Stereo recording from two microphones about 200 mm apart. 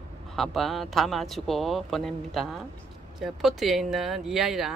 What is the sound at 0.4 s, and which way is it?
Speech, centre (ahead or behind).